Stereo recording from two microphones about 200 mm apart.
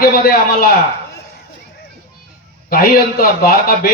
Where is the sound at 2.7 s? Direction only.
50° left (ahead or behind).